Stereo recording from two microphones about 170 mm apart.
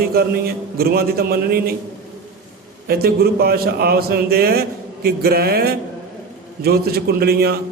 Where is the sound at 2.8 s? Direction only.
65° right (ahead or behind).